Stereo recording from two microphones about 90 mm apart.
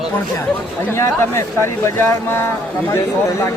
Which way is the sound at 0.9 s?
30° left (ahead or behind).